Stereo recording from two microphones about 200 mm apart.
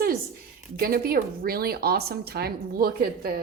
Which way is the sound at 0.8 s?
45° right (ahead or behind).